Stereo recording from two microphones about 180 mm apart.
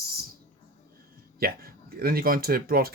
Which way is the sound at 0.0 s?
60° right (ahead or behind).